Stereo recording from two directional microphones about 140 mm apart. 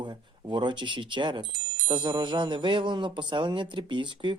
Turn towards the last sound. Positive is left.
turn(degrees=-35)  # may be behind; listen again after turning